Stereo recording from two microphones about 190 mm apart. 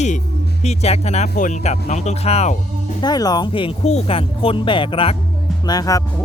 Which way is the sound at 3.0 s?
20° left (ahead or behind).